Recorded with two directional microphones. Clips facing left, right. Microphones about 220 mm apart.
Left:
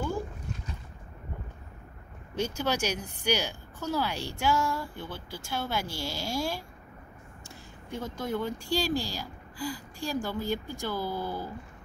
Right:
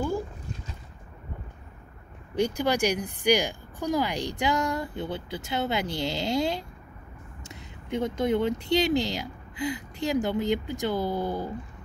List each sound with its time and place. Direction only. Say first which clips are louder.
2.3 s speech: right 5 dB; 15° right (ahead or behind)